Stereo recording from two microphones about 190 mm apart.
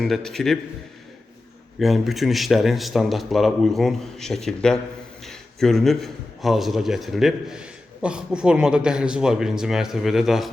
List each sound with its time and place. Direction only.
0.0 s a man's voice: centre (ahead or behind)
1.8 s a man's voice: centre (ahead or behind)